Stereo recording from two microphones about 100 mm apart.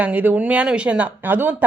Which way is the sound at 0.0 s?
15° right (ahead or behind).